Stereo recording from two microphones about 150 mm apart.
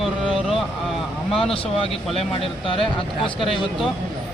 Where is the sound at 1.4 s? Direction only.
40° left (ahead or behind).